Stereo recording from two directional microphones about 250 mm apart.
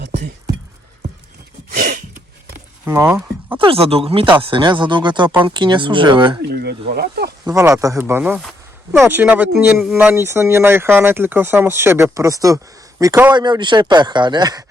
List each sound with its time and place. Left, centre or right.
0.0 s a sound: right
2.8 s speech: centre
3.6 s speech: right
6.5 s speech: right
7.4 s speech: centre